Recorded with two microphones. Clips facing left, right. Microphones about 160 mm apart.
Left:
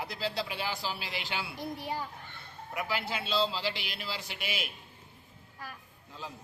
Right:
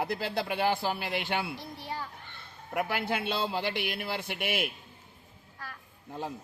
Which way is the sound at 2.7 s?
55° right (ahead or behind).